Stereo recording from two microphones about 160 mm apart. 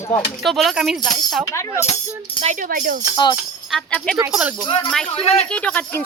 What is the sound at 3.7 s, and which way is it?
Speech, 5° left (ahead or behind).